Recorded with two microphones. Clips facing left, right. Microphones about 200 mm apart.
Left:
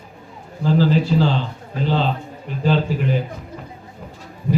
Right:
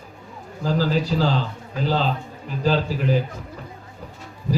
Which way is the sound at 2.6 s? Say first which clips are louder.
Left 2 dB; 40° right (ahead or behind).